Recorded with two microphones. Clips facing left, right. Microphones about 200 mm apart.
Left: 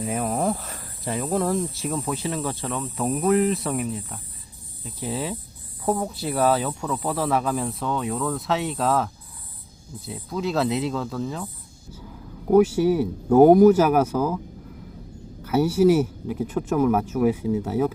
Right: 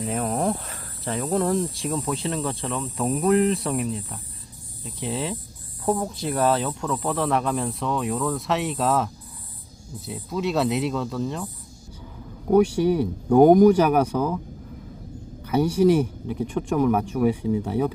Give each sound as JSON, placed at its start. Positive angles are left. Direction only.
{"t": 0.0, "sound": "speech", "side_deg": 5}
{"t": 10.1, "sound": "speech", "side_deg": 0}
{"t": 12.5, "sound": "speech", "side_deg": 5}
{"t": 15.4, "sound": "speech", "side_deg": 5}